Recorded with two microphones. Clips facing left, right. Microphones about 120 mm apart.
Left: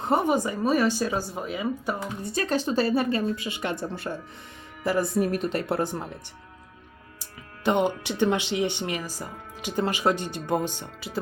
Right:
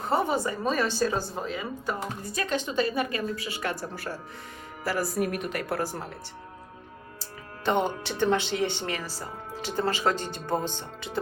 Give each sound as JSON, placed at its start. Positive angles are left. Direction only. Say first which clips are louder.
{"t": 0.0, "sound": "speech", "louder": "left 3 dB", "side_deg": 20}
{"t": 2.2, "sound": "a woman's voice", "louder": "left 5 dB", "side_deg": 35}
{"t": 7.2, "sound": "speech", "louder": "left 1 dB", "side_deg": 15}